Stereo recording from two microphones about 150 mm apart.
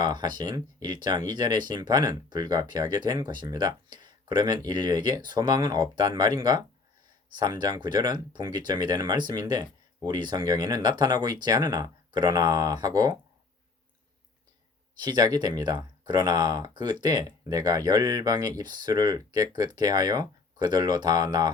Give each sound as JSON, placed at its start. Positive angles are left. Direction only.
{"t": 0.0, "sound": "speech", "side_deg": -30}
{"t": 15.0, "sound": "speech", "side_deg": -25}